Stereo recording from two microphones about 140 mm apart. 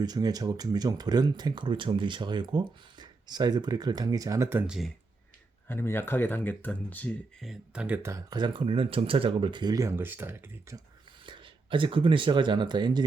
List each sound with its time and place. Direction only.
0.0 s speech: 30° right (ahead or behind)
4.6 s speech: 5° right (ahead or behind)
5.6 s speech: 15° left (ahead or behind)
7.4 s speech: 5° right (ahead or behind); by 8.4 s 20° right (ahead or behind)
8.4 s speech: 35° right (ahead or behind); by 10.8 s 20° right (ahead or behind)
11.3 s speech: 35° right (ahead or behind)